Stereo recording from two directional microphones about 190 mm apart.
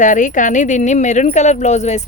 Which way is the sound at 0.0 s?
40° left (ahead or behind).